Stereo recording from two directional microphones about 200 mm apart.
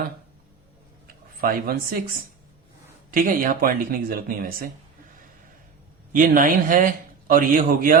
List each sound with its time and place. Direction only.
1.0 s speech: 45° right (ahead or behind)
3.1 s a man's voice: 45° right (ahead or behind)
6.1 s a man's voice: 40° right (ahead or behind)